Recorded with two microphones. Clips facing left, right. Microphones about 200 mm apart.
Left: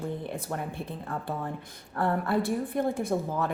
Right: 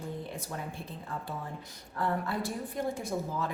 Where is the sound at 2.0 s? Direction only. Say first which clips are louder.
Left 5 dB; 60° left (ahead or behind).